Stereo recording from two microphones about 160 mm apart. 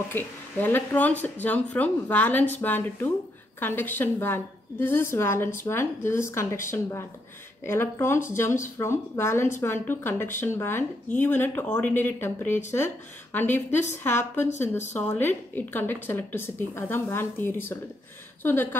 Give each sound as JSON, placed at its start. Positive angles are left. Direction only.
{"t": 0.1, "sound": "speech", "side_deg": 10}